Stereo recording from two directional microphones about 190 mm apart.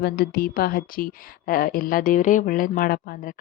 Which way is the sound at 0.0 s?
55° left (ahead or behind).